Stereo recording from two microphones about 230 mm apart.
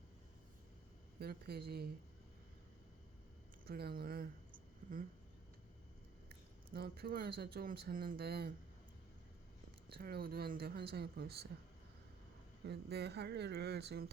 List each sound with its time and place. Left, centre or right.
1.2 s speech: right
3.7 s speech: right
6.7 s speech: right
9.9 s speech: right
12.6 s speech: right